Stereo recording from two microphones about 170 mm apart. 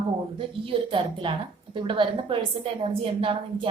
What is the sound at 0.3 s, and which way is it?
A woman's voice, 30° right (ahead or behind).